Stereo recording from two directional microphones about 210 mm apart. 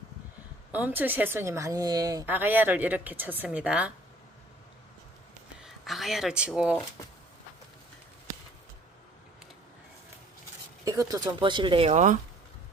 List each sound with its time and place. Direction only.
0.7 s speech: 10° right (ahead or behind)
5.6 s speech: centre (ahead or behind)
10.8 s speech: 15° right (ahead or behind); by 12.1 s 30° right (ahead or behind)